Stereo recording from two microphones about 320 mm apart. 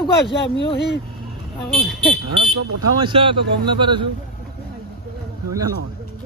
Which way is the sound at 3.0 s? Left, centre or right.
Centre.